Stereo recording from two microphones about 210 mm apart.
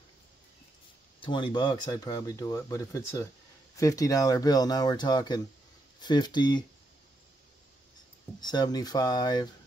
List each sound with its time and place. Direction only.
1.2 s speech: 20° left (ahead or behind)
8.4 s speech: 20° left (ahead or behind)